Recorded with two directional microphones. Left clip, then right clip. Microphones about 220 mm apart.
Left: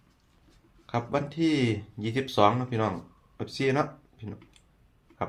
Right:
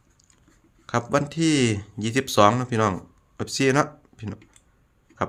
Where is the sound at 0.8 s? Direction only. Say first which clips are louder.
Right 6 dB; 40° right (ahead or behind).